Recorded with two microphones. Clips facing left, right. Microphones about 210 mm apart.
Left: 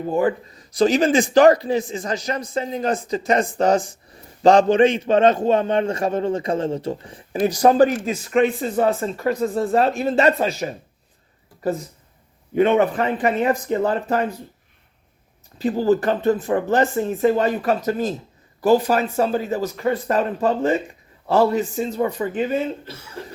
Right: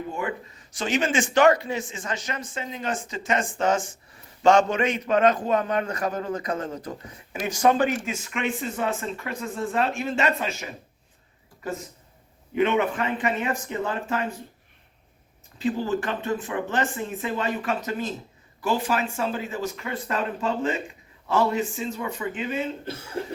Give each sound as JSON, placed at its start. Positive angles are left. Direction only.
{"t": 0.1, "sound": "a man's voice", "side_deg": 35}
{"t": 12.5, "sound": "a man's voice", "side_deg": 35}
{"t": 15.5, "sound": "a man's voice", "side_deg": 40}